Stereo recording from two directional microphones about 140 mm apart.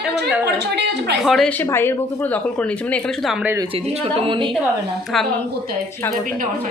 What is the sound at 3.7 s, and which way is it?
Speech, 45° right (ahead or behind).